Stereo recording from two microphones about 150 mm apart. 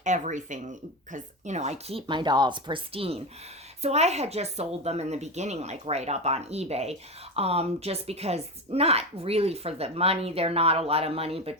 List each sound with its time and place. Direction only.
0.0 s speech: 55° right (ahead or behind)